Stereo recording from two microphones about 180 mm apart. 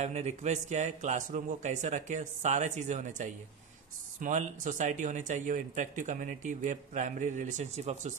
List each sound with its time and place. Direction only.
0.0 s a man's voice: 40° right (ahead or behind)